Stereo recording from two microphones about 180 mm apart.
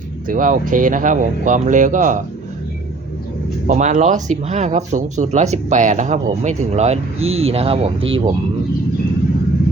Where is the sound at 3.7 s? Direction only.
40° right (ahead or behind).